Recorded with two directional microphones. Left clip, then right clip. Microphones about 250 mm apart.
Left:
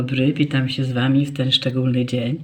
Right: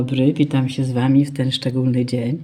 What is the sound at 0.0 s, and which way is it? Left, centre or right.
Speech, centre.